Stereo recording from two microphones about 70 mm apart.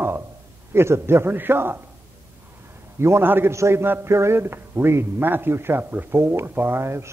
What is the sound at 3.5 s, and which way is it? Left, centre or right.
A man's voice, right.